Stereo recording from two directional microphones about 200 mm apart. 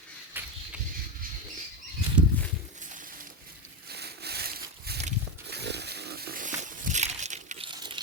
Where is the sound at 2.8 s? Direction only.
40° right (ahead or behind).